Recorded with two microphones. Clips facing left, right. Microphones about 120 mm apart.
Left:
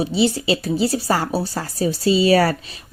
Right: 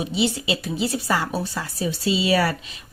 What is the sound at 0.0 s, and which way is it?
A woman's voice, 35° left (ahead or behind).